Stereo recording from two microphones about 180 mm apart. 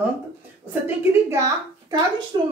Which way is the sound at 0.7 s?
15° right (ahead or behind).